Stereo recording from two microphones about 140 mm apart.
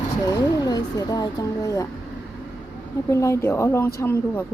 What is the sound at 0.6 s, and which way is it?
Speech, 25° left (ahead or behind).